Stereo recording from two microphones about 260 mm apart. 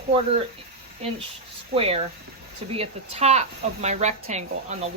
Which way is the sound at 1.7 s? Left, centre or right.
Right.